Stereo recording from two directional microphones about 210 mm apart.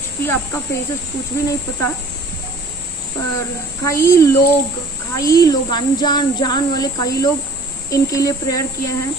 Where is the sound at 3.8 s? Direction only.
15° left (ahead or behind).